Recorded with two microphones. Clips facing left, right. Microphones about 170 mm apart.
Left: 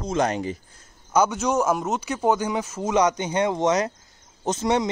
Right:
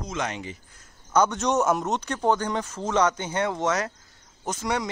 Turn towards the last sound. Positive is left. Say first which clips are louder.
# left 6 dB
turn(degrees=25)  # may be behind; listen again after turning